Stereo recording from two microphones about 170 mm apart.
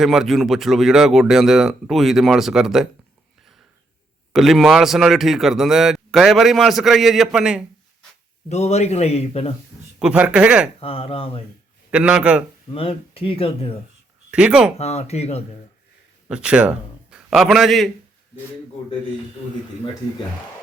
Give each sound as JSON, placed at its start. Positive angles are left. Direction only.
{"t": 0.0, "sound": "speech", "side_deg": 0}
{"t": 4.3, "sound": "speech", "side_deg": 0}
{"t": 8.4, "sound": "a man's voice", "side_deg": 40}
{"t": 10.0, "sound": "speech", "side_deg": -5}
{"t": 10.8, "sound": "a man's voice", "side_deg": 35}
{"t": 11.9, "sound": "speech", "side_deg": -5}
{"t": 12.7, "sound": "a man's voice", "side_deg": 35}
{"t": 14.3, "sound": "speech", "side_deg": -5}
{"t": 14.8, "sound": "a man's voice", "side_deg": 40}
{"t": 16.3, "sound": "a man's voice", "side_deg": -5}